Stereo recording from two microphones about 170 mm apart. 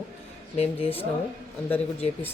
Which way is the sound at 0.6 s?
35° left (ahead or behind).